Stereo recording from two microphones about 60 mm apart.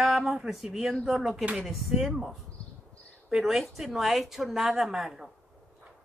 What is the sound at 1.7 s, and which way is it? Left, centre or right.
Speech, centre.